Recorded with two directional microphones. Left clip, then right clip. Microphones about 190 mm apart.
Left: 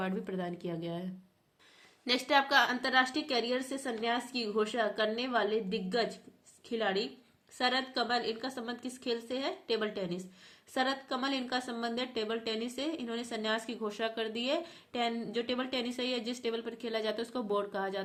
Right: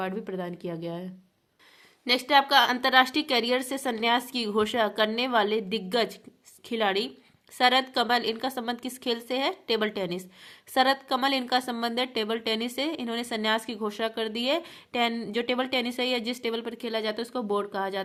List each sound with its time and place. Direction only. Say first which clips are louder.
0.0 s speech: right 4 dB; 25° right (ahead or behind)
2.0 s a woman's voice: right 7 dB; 25° right (ahead or behind)